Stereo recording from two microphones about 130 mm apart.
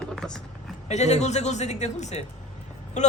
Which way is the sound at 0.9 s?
60° left (ahead or behind).